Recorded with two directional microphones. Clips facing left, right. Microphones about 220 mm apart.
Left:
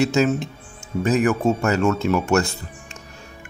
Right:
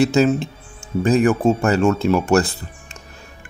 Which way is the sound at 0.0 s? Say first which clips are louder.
Right 3 dB; 35° right (ahead or behind).